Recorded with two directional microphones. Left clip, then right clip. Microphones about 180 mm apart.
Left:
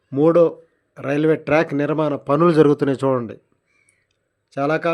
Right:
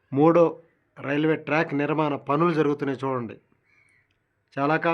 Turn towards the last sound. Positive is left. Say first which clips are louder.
# left 3 dB
turn(degrees=15)  # may be behind; listen again after turning